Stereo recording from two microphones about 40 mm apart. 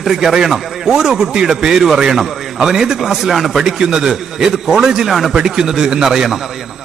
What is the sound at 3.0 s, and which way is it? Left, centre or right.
A man's voice, centre.